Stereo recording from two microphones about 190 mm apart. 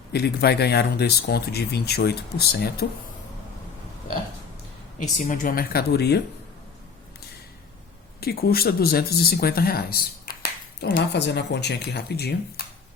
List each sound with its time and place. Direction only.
0.1 s speech: 60° left (ahead or behind)
5.3 s speech: 45° left (ahead or behind)
8.2 s speech: 55° left (ahead or behind)